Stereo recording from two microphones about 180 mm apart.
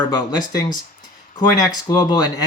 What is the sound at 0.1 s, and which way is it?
Speech, 20° left (ahead or behind).